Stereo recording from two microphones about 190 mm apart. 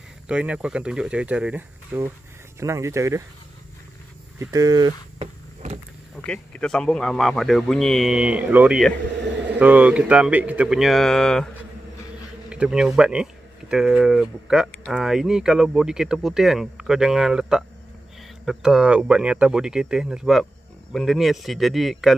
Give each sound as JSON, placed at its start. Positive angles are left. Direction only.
{"t": 0.3, "sound": "speech", "side_deg": -5}
{"t": 4.4, "sound": "speech", "side_deg": -20}
{"t": 6.1, "sound": "speech", "side_deg": 5}
{"t": 12.4, "sound": "speech", "side_deg": -5}